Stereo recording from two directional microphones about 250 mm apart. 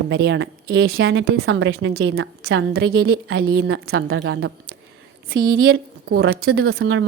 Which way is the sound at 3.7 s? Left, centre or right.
Right.